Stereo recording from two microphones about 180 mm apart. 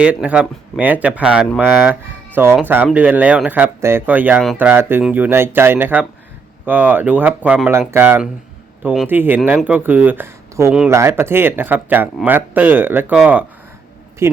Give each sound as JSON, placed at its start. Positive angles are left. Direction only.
{"t": 0.0, "sound": "speech", "side_deg": -5}